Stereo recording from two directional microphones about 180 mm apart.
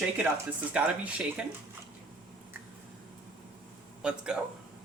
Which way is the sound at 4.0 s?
5° right (ahead or behind).